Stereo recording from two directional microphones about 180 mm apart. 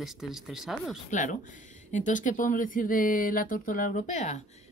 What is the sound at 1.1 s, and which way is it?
Speech, 45° left (ahead or behind).